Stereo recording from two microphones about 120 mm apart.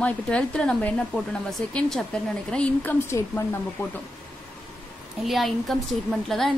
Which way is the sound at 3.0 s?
20° left (ahead or behind).